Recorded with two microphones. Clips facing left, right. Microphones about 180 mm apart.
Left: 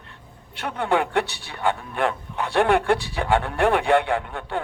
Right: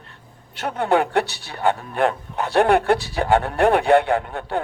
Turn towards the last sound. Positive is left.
turn(degrees=-40)  # may be behind; listen again after turning